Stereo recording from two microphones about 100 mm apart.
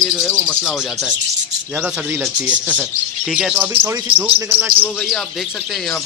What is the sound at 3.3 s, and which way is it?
Speech, 5° right (ahead or behind).